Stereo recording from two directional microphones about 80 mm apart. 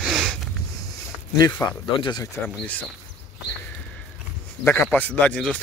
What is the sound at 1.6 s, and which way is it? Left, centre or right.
Speech, left.